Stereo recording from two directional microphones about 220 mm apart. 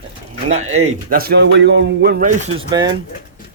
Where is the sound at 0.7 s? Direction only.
30° right (ahead or behind).